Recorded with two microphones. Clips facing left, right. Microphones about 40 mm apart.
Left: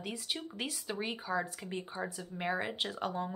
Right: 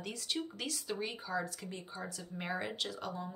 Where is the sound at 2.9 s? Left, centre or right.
Left.